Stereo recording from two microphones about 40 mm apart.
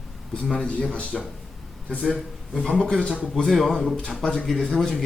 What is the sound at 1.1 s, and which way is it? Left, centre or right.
Speech, centre.